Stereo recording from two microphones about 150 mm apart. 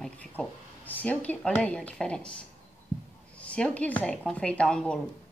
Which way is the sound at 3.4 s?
10° left (ahead or behind).